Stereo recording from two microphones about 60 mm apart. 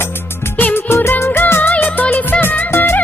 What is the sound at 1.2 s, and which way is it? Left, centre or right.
Music, left.